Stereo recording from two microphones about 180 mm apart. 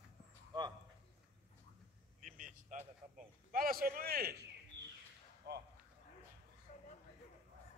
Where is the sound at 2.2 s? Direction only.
45° right (ahead or behind).